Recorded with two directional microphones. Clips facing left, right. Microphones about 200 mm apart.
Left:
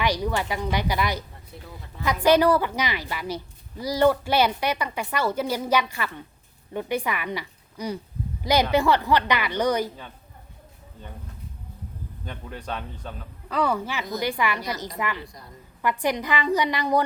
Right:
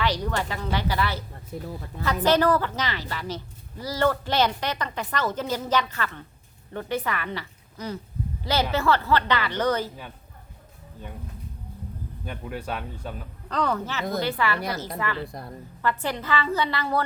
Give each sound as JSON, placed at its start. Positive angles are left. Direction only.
{"t": 0.0, "sound": "a woman's voice", "side_deg": 10}
{"t": 1.5, "sound": "speech", "side_deg": -45}
{"t": 2.2, "sound": "a woman's voice", "side_deg": 10}
{"t": 12.2, "sound": "speech", "side_deg": -10}
{"t": 13.5, "sound": "a woman's voice", "side_deg": 10}
{"t": 15.2, "sound": "a woman's voice", "side_deg": -55}
{"t": 15.8, "sound": "a woman's voice", "side_deg": 15}